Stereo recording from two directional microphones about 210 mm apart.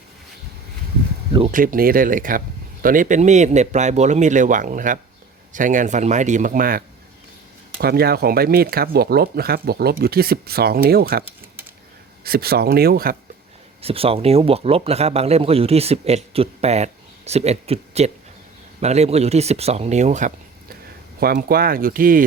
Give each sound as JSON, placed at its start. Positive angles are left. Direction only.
{"t": 1.5, "sound": "speech", "side_deg": -40}
{"t": 12.2, "sound": "speech", "side_deg": -45}
{"t": 13.8, "sound": "speech", "side_deg": -25}
{"t": 21.2, "sound": "speech", "side_deg": -45}